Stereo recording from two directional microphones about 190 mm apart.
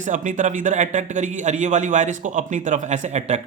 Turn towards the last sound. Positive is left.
turn(degrees=-35)  # may be behind; listen again after turning